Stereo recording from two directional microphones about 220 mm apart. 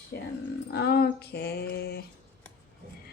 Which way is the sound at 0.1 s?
45° left (ahead or behind).